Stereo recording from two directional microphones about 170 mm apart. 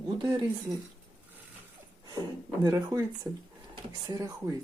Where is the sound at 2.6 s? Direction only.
20° right (ahead or behind).